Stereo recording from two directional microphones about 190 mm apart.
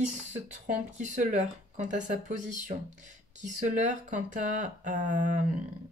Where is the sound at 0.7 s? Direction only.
40° right (ahead or behind).